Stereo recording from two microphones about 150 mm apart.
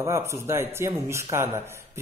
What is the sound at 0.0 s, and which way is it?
Speech, 20° right (ahead or behind).